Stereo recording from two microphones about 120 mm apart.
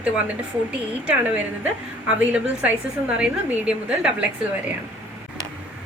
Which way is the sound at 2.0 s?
10° right (ahead or behind).